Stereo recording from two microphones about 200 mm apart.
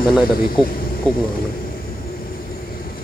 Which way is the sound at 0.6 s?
5° left (ahead or behind).